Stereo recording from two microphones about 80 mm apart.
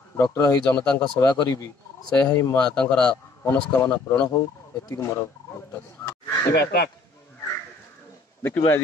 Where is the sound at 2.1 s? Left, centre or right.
Centre.